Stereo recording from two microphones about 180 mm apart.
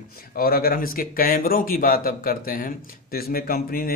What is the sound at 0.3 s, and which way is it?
Speech, 55° left (ahead or behind).